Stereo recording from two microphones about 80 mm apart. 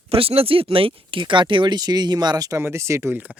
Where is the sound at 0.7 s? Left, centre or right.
Right.